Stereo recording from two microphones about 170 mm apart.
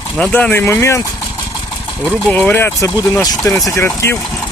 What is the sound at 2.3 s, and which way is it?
Speech, 10° left (ahead or behind).